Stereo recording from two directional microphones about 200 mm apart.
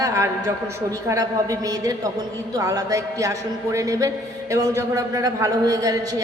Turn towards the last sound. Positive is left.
turn(degrees=-15)  # may be behind; listen again after turning